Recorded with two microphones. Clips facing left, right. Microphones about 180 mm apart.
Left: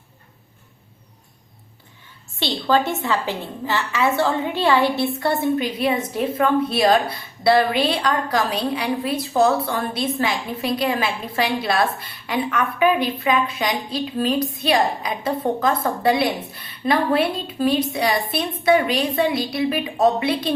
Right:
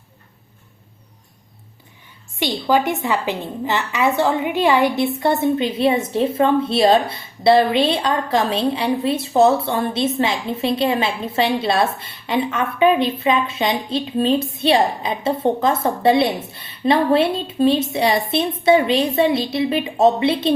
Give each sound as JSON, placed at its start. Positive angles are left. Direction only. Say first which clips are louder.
{"t": 2.4, "sound": "a woman's voice", "louder": "right 2 dB", "side_deg": -15}